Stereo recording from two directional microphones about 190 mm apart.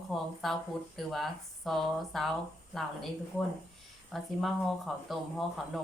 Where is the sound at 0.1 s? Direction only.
Centre (ahead or behind).